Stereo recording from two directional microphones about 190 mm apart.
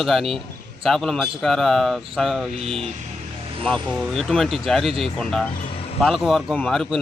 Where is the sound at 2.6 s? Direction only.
30° right (ahead or behind).